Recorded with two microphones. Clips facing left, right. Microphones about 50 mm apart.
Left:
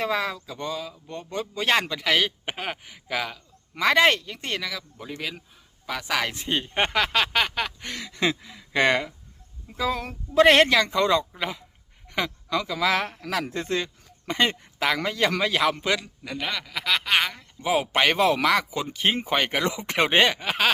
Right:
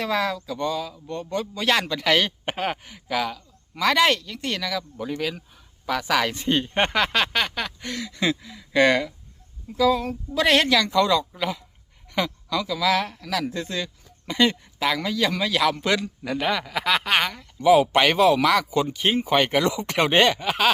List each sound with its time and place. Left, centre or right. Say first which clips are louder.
0.0 s speech: right 2 dB; centre
1.9 s speech: right 2 dB; centre
3.8 s speech: even; left
4.6 s speech: right 5 dB; centre
7.9 s speech: right 3 dB; left
9.7 s speech: right 7 dB; centre
10.1 s speech: left 3 dB; left
15.5 s speech: right 1 dB; left
15.8 s speech: right 2 dB; centre
16.3 s speech: right 5 dB; centre
17.2 s speech: right 1 dB; centre
18.0 s speech: right 3 dB; left